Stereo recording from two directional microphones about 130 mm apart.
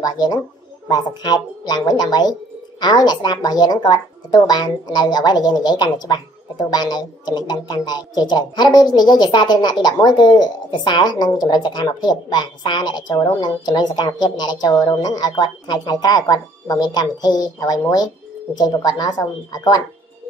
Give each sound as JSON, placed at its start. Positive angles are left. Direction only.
{"t": 0.0, "sound": "a woman's voice", "side_deg": 30}